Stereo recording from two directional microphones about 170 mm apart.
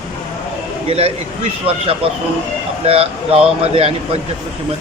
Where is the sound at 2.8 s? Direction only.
35° right (ahead or behind).